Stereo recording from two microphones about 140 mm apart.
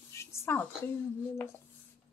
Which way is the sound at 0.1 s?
20° left (ahead or behind).